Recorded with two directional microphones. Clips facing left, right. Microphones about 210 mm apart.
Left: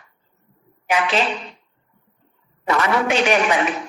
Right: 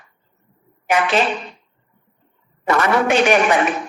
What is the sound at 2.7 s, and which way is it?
A woman's voice, 50° right (ahead or behind).